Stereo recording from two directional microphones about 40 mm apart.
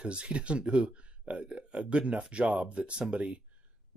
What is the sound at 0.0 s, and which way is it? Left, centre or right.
Speech, right.